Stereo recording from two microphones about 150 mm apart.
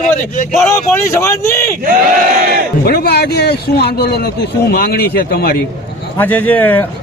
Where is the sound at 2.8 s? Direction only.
90° left.